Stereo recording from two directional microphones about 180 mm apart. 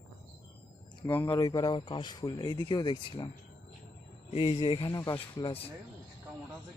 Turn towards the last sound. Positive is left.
turn(degrees=30)  # may be behind; listen again after turning